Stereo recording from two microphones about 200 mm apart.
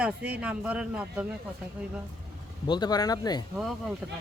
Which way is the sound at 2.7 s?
20° left (ahead or behind).